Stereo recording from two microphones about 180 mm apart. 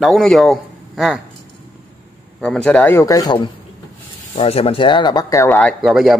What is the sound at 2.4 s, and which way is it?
Speech, 5° left (ahead or behind).